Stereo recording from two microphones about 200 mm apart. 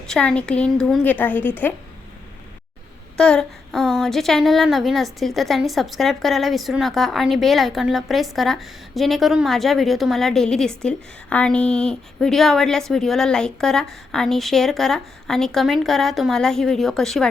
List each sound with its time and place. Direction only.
0.1 s a woman's voice: 5° left (ahead or behind)
3.2 s a woman's voice: 5° left (ahead or behind)